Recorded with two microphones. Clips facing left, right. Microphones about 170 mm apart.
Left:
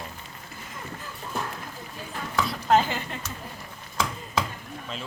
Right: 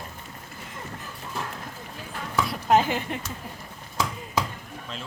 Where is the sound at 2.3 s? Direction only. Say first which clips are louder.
Right 1 dB; 15° right (ahead or behind).